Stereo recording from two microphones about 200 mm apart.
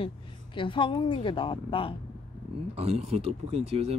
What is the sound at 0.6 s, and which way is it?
A woman's voice, 25° left (ahead or behind).